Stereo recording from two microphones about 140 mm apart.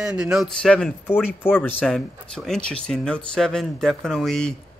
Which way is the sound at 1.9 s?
5° left (ahead or behind).